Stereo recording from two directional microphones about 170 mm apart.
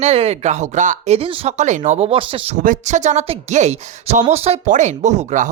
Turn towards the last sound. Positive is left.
turn(degrees=-45)  # may be behind; listen again after turning